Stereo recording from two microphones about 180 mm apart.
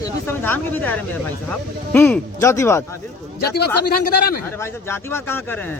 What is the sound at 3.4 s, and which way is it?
Speech, 60° left (ahead or behind).